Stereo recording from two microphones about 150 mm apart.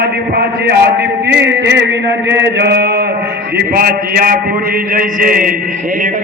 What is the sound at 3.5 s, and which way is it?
A man's voice, 80° right.